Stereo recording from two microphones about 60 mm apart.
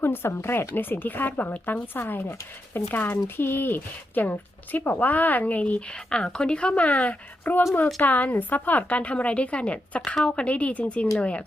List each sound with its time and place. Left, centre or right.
0.0 s speech: left
0.8 s speech: left
6.1 s speech: centre